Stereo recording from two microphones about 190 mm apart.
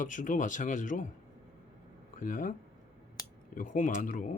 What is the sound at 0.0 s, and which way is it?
Speech, 45° left (ahead or behind).